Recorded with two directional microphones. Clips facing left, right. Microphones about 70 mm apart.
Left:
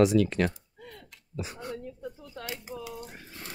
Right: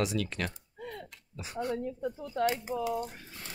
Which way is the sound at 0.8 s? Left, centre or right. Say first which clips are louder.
Right 6 dB; right.